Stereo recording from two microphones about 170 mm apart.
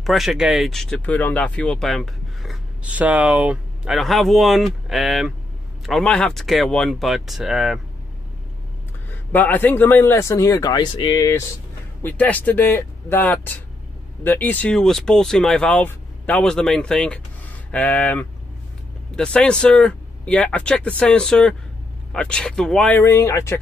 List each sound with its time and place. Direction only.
0.0 s speech: centre (ahead or behind)
9.1 s speech: 10° left (ahead or behind)
12.0 s speech: 10° left (ahead or behind)